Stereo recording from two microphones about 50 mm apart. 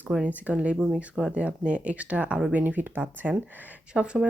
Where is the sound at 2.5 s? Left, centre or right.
Right.